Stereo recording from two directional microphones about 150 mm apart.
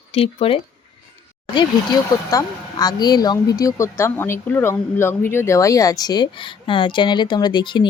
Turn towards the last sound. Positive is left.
turn(degrees=30)  # may be behind; listen again after turning